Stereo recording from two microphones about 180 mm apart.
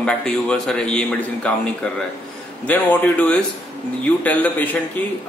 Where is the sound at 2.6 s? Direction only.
10° left (ahead or behind).